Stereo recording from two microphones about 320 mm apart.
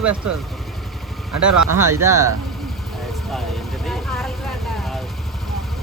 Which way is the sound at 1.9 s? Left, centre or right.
Centre.